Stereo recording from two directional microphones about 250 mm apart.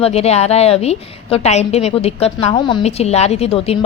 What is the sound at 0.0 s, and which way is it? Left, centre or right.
A woman's voice, left.